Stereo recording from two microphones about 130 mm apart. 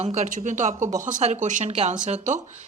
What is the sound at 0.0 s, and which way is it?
Speech, 60° right (ahead or behind).